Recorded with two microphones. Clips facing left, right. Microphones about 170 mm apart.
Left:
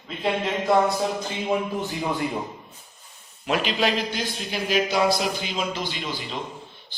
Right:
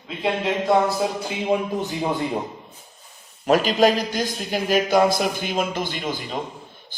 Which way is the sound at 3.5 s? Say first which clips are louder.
Right 6 dB; 40° right (ahead or behind).